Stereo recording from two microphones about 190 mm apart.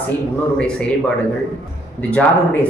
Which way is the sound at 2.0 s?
5° left (ahead or behind).